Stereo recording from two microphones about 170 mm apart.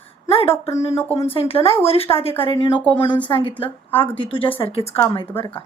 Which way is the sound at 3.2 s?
30° left (ahead or behind).